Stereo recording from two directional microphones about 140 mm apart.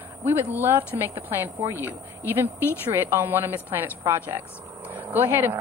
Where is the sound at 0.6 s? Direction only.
15° right (ahead or behind).